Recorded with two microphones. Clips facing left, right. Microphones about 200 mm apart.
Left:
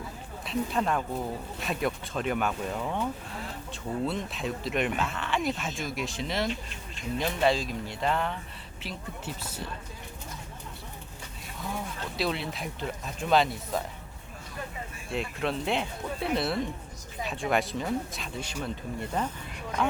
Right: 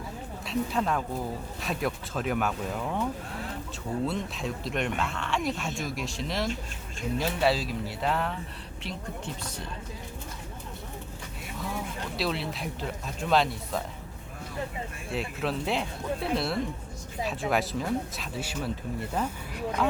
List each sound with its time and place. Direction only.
0.4 s speech: centre (ahead or behind)
12.1 s speech: centre (ahead or behind)
15.1 s speech: centre (ahead or behind)